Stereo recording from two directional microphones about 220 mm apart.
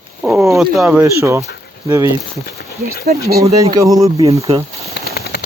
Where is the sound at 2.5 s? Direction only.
45° left (ahead or behind).